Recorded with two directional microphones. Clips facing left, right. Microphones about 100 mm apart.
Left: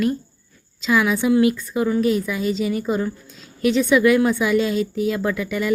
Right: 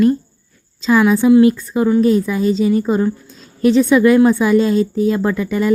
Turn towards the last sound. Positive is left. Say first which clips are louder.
# right 5 dB
turn(degrees=-35)  # may be behind; listen again after turning